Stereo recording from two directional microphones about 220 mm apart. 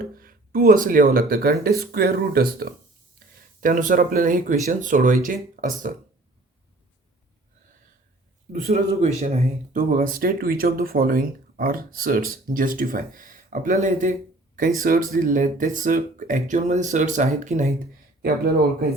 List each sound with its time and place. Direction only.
0.0 s speech: 40° right (ahead or behind)
8.5 s speech: 30° right (ahead or behind)
18.2 s speech: 45° right (ahead or behind)